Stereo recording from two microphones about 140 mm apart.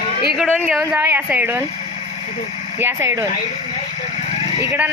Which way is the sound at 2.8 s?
15° right (ahead or behind).